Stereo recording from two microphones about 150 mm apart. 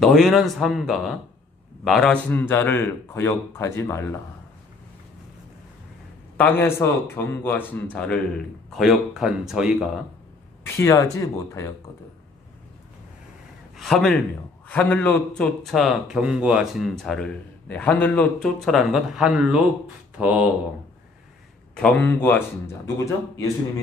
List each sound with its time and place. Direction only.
0.0 s a man's voice: centre (ahead or behind); by 4.2 s 15° left (ahead or behind)
6.3 s a man's voice: 10° left (ahead or behind)
8.7 s a man's voice: centre (ahead or behind)
10.8 s speech: 20° left (ahead or behind)
13.7 s a man's voice: centre (ahead or behind)
21.7 s a man's voice: 10° left (ahead or behind)